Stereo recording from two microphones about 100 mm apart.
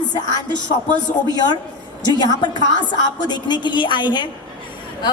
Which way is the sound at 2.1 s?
45° left (ahead or behind).